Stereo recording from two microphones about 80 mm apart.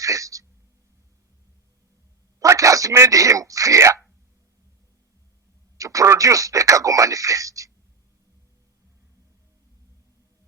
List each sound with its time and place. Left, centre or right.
0.0 s speech: right
2.4 s speech: right
5.7 s speech: right